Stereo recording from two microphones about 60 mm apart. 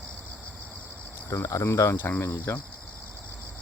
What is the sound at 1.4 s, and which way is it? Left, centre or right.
Speech, left.